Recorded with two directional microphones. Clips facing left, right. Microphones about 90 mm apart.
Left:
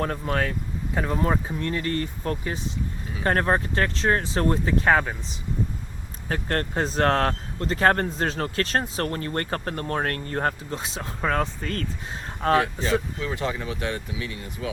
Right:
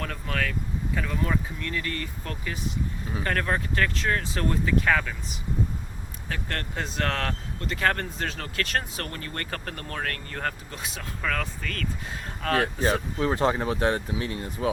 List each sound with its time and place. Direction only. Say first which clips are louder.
0.0 s speech: left 5 dB; 30° left (ahead or behind)
12.6 s speech: even; 40° right (ahead or behind)